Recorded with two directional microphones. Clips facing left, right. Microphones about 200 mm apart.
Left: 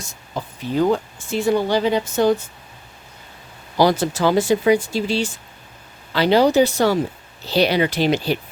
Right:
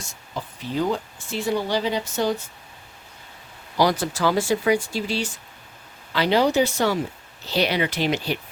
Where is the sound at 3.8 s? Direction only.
25° left (ahead or behind).